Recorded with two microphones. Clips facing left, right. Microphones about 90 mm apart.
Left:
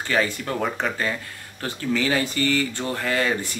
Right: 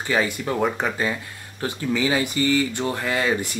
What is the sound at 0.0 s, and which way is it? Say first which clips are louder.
Speech: right 1 dB; 15° right (ahead or behind).